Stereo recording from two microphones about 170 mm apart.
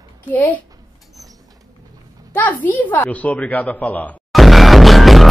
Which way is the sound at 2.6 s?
10° left (ahead or behind).